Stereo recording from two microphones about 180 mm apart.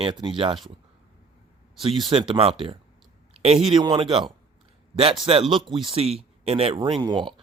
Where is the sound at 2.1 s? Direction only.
30° right (ahead or behind).